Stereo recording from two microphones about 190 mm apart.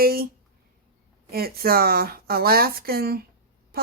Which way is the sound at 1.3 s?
50° right (ahead or behind).